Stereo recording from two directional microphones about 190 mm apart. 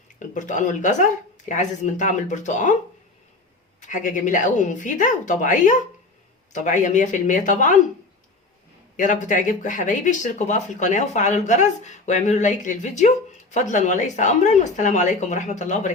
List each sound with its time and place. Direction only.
0.2 s speech: 40° left (ahead or behind)
3.8 s speech: 40° left (ahead or behind)
9.0 s speech: 40° left (ahead or behind)